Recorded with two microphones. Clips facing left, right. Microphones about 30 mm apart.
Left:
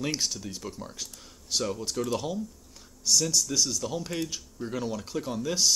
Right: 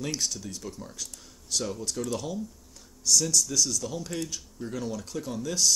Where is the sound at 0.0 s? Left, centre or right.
Centre.